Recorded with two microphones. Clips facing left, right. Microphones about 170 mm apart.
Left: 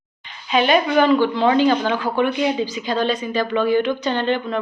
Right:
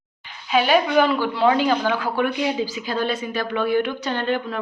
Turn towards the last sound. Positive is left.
turn(degrees=-5)  # may be behind; listen again after turning